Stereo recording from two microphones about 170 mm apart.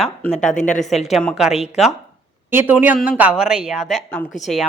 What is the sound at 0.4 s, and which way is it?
Speech, 50° left (ahead or behind).